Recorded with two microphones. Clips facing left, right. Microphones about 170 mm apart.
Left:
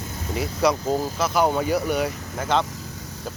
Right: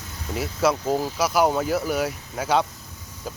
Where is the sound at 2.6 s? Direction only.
80° left.